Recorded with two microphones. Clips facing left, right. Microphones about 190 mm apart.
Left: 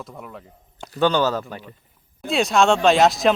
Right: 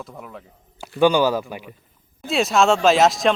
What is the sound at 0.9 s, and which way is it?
A man's voice, 10° right (ahead or behind).